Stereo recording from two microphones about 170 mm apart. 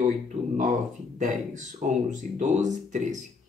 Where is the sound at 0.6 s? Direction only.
50° right (ahead or behind).